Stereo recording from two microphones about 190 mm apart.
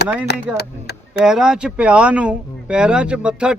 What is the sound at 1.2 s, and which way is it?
Speech, 5° right (ahead or behind).